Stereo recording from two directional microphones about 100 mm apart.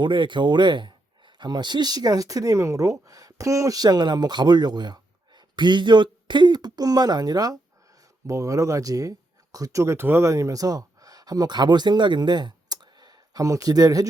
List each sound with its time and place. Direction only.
0.0 s speech: 50° right (ahead or behind); by 14.1 s 35° right (ahead or behind)